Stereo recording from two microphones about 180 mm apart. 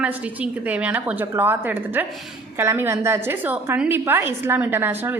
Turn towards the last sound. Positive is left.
turn(degrees=-10)  # may be behind; listen again after turning